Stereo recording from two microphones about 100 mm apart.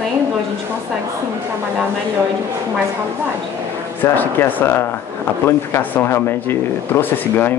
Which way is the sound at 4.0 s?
20° left (ahead or behind).